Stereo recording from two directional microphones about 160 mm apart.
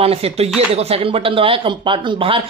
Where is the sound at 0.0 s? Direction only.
40° right (ahead or behind).